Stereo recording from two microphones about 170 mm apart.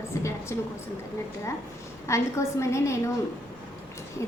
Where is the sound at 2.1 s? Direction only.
15° left (ahead or behind).